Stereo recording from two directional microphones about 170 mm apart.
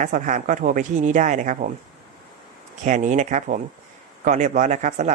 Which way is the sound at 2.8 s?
45° right (ahead or behind).